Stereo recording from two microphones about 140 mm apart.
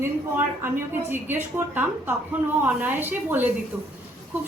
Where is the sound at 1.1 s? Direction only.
15° right (ahead or behind).